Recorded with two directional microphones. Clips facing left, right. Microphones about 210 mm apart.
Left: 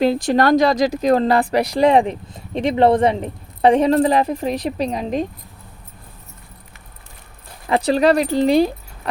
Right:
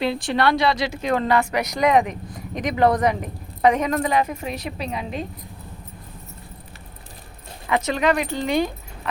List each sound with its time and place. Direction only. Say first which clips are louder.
0.0 s speech: left 5 dB; 40° left (ahead or behind)
7.7 s speech: left 6 dB; 35° left (ahead or behind)